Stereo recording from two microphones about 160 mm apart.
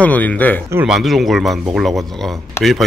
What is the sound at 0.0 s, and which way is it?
Speech, 10° left (ahead or behind).